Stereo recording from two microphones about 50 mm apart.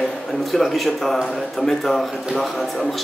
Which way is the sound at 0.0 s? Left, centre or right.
Centre.